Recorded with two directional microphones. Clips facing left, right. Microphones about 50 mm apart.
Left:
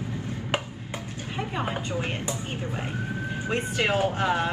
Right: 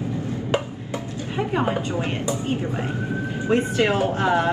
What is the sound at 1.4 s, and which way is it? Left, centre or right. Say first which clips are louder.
Speech: right 7 dB; right.